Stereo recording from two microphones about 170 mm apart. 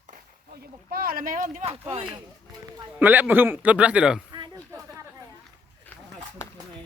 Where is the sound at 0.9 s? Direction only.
60° right (ahead or behind).